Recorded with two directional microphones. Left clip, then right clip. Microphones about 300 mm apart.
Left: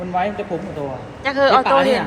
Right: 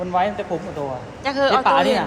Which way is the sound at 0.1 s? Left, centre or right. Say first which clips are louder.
Even; centre.